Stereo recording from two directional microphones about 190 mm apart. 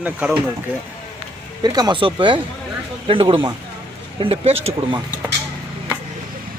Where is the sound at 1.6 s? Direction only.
20° right (ahead or behind).